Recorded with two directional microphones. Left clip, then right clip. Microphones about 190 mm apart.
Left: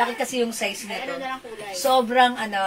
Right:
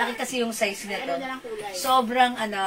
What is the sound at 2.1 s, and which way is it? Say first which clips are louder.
Speech: left 3 dB; 15° right (ahead or behind).